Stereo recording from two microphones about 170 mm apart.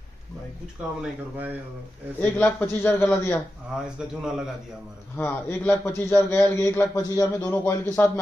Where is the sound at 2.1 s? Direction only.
10° left (ahead or behind).